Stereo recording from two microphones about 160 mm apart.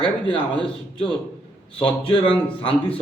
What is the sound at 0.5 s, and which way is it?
Speech, 30° left (ahead or behind).